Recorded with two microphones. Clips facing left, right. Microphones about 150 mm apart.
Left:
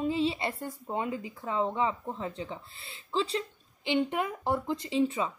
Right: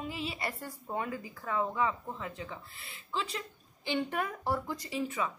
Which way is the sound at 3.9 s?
20° left (ahead or behind).